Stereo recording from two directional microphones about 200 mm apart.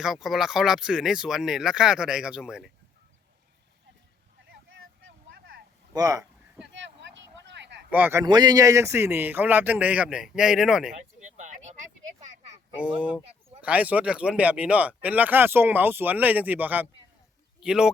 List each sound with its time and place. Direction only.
0.0 s speech: centre (ahead or behind)
4.5 s vehicle: 65° right (ahead or behind)
5.9 s speech: 20° right (ahead or behind)
6.7 s vehicle: 65° right (ahead or behind)
7.9 s speech: 10° right (ahead or behind)
8.2 s speech: 20° right (ahead or behind); by 10.9 s centre (ahead or behind)
11.2 s a sound: 40° right (ahead or behind)
12.8 s speech: 5° right (ahead or behind)